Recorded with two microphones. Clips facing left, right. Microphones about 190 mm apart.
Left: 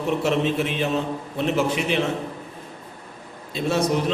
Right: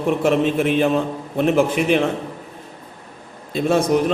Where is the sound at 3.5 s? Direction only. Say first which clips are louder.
Right 5 dB; 50° right (ahead or behind).